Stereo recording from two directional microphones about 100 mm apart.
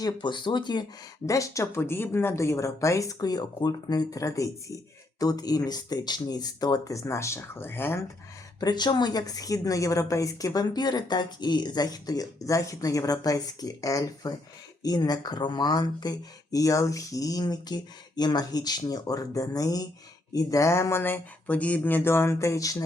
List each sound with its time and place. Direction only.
0.0 s speech: 50° left (ahead or behind)
1.3 s speech: 30° left (ahead or behind)
8.6 s speech: 45° left (ahead or behind)